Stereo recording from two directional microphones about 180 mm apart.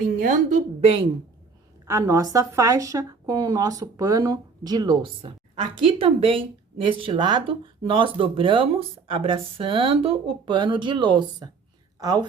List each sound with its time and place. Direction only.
0.2 s a woman's voice: 40° right (ahead or behind)
1.9 s a woman's voice: 20° right (ahead or behind)